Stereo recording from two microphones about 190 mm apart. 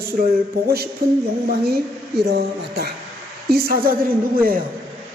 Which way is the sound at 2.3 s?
55° right (ahead or behind).